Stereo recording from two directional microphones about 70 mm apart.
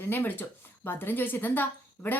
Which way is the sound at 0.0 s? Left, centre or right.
Left.